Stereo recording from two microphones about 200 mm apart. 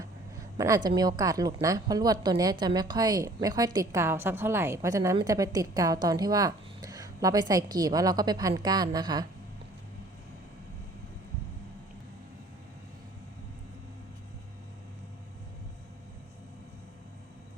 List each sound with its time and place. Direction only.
0.5 s a woman's voice: 20° right (ahead or behind)